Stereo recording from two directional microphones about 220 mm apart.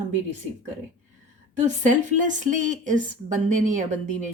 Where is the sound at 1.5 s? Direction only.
35° right (ahead or behind).